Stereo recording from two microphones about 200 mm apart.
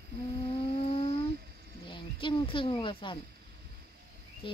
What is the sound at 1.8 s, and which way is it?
Speech, 25° left (ahead or behind).